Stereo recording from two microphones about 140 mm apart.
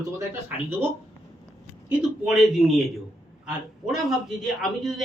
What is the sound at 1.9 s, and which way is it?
A man's voice, 5° right (ahead or behind).